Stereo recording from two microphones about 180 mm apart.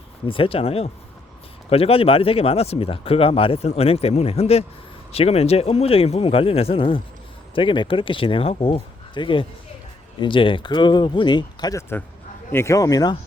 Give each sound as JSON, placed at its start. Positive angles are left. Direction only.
{"t": 0.3, "sound": "speech", "side_deg": 30}